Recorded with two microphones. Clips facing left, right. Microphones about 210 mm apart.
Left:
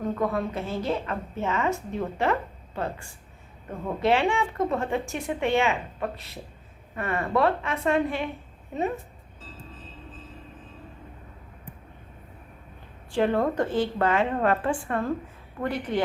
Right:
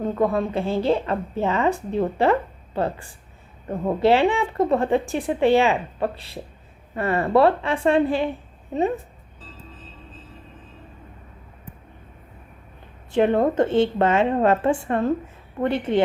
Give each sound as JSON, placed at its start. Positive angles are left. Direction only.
{"t": 0.0, "sound": "speech", "side_deg": -30}
{"t": 13.1, "sound": "a woman's voice", "side_deg": -20}